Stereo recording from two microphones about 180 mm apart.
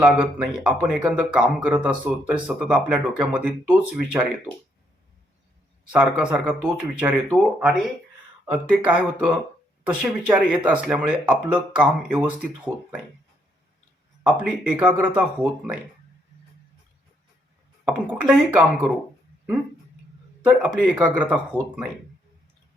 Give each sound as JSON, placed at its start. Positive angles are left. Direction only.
{"t": 0.0, "sound": "speech", "side_deg": -5}
{"t": 5.9, "sound": "speech", "side_deg": -5}
{"t": 14.3, "sound": "speech", "side_deg": -5}
{"t": 17.8, "sound": "speech", "side_deg": -5}
{"t": 20.4, "sound": "speech", "side_deg": -10}